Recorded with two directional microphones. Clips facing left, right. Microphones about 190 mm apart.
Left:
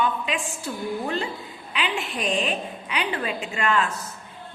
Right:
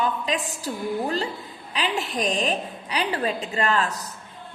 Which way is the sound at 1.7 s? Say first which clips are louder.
Right 2 dB; 40° right (ahead or behind).